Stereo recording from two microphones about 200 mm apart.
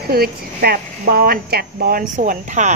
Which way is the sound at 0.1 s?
50° right (ahead or behind).